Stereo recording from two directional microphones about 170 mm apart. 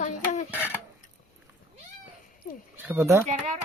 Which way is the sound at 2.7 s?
10° right (ahead or behind).